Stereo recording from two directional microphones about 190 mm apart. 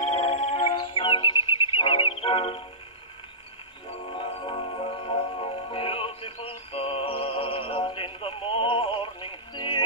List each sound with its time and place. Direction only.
0.0 s music: 30° left (ahead or behind)
4.1 s music: 30° left (ahead or behind)